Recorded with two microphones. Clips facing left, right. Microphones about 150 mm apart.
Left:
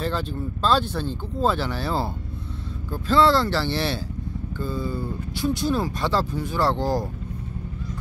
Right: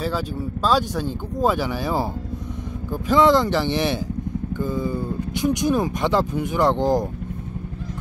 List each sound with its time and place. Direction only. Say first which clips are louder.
0.0 s speech: right 2 dB; 10° right (ahead or behind)